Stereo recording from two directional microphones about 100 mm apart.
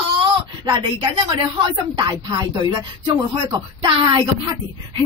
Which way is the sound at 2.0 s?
45° right (ahead or behind).